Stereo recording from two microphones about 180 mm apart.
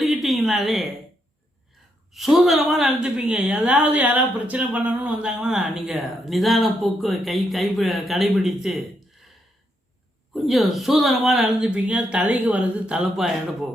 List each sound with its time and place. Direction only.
0.0 s a sound: centre (ahead or behind)
2.1 s a woman's voice: centre (ahead or behind)
10.3 s a woman's voice: centre (ahead or behind)